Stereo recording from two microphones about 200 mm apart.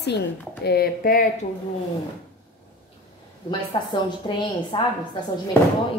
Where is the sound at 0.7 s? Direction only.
50° left (ahead or behind).